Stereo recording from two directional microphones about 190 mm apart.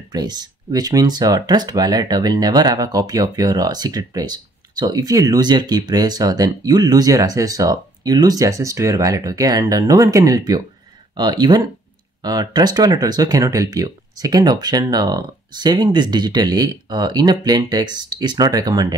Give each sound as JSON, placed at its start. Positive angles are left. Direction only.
{"t": 0.1, "sound": "speech", "side_deg": -20}